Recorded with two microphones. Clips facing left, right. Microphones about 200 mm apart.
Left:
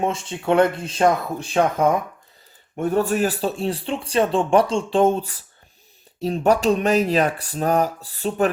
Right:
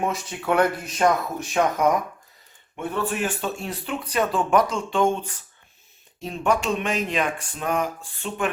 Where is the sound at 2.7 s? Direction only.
40° left (ahead or behind).